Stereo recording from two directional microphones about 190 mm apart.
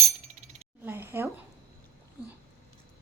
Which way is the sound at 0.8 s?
10° right (ahead or behind).